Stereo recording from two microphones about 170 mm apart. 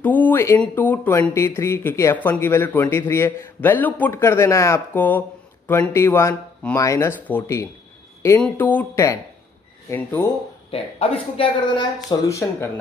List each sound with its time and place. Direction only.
0.0 s speech: 10° left (ahead or behind)
10.7 s speech: 35° left (ahead or behind); by 12.6 s 15° left (ahead or behind)